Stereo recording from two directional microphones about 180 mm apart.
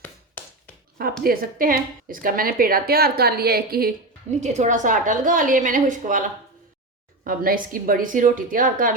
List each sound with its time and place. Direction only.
0.4 s a sound: 10° left (ahead or behind)
1.2 s a woman's voice: 55° right (ahead or behind)
4.3 s a woman's voice: 40° right (ahead or behind)